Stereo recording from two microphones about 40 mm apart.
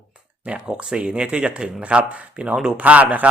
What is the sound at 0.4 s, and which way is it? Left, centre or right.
Speech, right.